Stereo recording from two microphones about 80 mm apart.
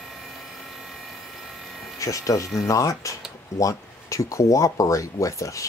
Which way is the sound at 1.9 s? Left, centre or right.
Left.